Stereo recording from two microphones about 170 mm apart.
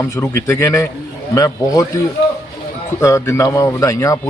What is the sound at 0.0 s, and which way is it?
A man's voice, 15° left (ahead or behind).